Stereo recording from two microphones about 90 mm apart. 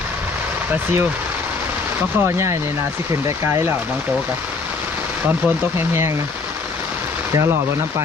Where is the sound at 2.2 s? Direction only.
30° right (ahead or behind).